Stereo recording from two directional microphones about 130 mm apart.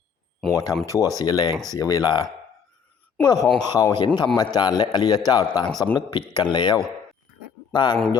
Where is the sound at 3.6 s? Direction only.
30° left (ahead or behind).